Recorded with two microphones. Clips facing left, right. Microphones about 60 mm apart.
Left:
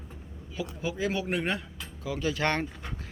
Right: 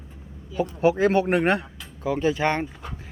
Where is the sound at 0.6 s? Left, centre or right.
Right.